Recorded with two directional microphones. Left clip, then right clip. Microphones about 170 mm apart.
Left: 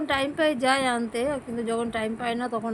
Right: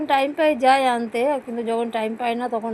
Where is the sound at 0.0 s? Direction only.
5° left (ahead or behind).